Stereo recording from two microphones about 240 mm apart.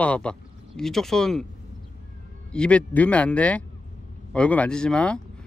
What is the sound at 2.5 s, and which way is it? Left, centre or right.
A man's voice, centre.